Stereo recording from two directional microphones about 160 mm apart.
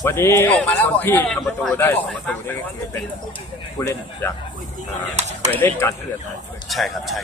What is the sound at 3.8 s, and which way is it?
Speech, 15° left (ahead or behind).